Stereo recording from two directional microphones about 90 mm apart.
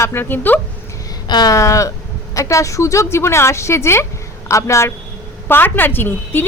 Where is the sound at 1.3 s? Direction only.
45° left (ahead or behind).